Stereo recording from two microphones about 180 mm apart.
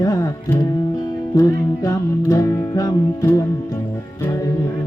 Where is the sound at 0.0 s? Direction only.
15° left (ahead or behind).